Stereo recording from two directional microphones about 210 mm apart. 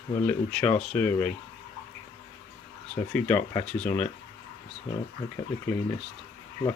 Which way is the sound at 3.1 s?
10° left (ahead or behind).